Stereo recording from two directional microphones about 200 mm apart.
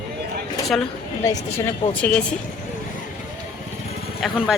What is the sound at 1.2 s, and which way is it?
Speech, 15° left (ahead or behind).